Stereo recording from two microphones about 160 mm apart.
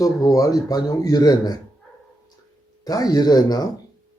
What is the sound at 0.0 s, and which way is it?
Speech, 20° left (ahead or behind).